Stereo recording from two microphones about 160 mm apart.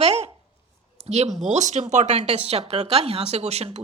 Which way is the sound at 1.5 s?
45° right (ahead or behind).